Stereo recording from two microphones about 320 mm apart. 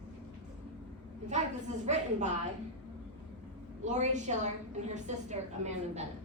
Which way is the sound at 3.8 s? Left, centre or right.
Right.